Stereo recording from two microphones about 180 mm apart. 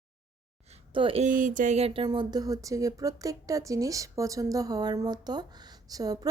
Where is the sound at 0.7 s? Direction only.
30° right (ahead or behind).